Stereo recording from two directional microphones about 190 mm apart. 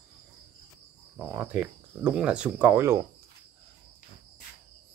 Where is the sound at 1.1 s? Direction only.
10° right (ahead or behind).